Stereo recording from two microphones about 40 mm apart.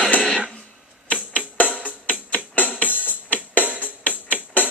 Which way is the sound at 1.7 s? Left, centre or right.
Left.